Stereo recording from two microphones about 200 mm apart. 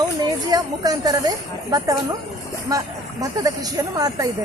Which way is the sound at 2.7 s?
15° right (ahead or behind).